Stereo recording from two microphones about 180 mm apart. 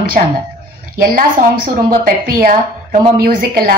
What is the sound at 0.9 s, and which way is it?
A woman's voice, 55° right (ahead or behind).